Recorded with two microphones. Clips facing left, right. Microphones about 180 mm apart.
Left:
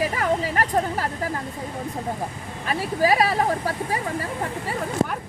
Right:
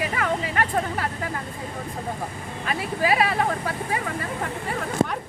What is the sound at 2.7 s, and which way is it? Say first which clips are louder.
Speech: left 3 dB; 35° left (ahead or behind).